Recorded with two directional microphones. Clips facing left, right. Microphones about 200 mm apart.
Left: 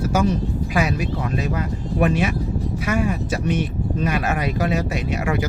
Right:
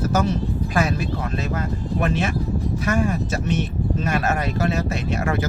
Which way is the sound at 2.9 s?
45° right (ahead or behind).